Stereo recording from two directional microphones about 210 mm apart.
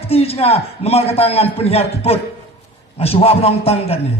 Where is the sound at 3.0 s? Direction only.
30° left (ahead or behind).